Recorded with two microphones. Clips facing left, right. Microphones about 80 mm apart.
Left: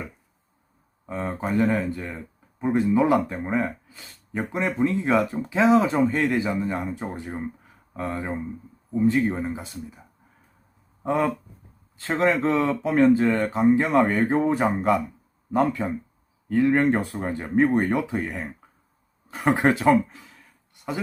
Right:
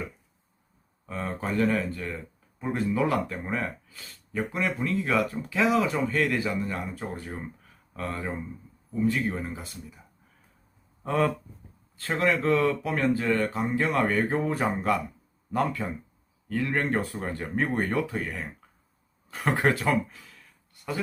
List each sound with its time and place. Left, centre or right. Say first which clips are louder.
1.0 s speech: left 3 dB; left
11.9 s speech: left 4 dB; left
20.8 s a sound: left 4 dB; centre